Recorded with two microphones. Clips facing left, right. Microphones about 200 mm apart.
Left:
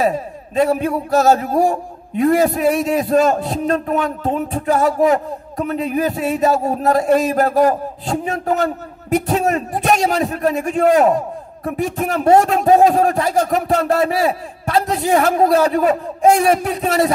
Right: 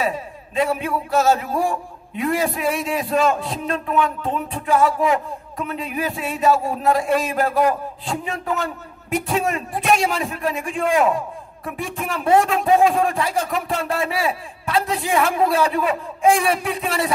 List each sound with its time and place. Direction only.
0.0 s a man's voice: 40° left (ahead or behind)